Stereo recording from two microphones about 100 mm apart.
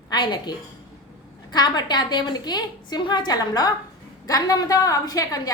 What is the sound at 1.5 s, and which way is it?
A woman's voice, 45° left (ahead or behind).